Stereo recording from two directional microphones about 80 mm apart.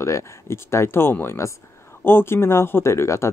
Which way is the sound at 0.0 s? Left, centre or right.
Left.